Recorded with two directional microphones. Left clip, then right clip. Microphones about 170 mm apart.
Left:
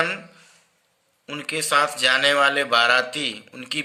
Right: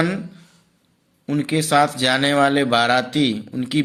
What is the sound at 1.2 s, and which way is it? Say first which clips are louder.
A man's voice: right 5 dB; 35° right (ahead or behind).